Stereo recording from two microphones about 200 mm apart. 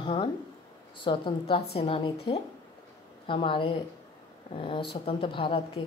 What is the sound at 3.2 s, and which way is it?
A woman's voice, 25° left (ahead or behind).